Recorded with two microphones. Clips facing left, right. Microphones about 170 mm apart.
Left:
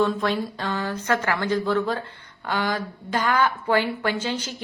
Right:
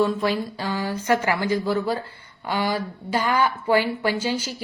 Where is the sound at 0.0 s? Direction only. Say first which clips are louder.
Right 1 dB; 5° right (ahead or behind).